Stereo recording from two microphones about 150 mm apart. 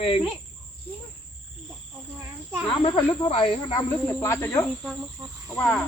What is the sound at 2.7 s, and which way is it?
Speech, 35° left (ahead or behind).